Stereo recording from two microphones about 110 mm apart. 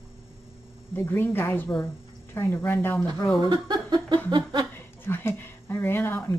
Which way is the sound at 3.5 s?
45° right (ahead or behind).